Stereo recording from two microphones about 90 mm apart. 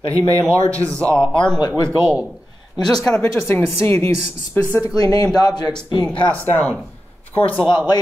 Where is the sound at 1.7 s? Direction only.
30° right (ahead or behind).